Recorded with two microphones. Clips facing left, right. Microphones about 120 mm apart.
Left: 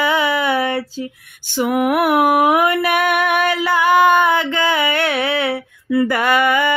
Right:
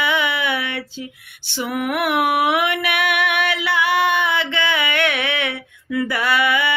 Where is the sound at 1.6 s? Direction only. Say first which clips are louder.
Left 6 dB; 45° left (ahead or behind).